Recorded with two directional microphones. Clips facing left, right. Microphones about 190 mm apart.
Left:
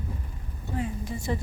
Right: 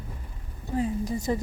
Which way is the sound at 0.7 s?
40° right (ahead or behind).